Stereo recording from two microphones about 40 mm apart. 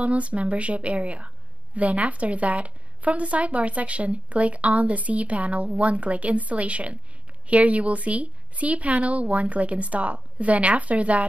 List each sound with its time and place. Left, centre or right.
0.0 s a woman's voice: right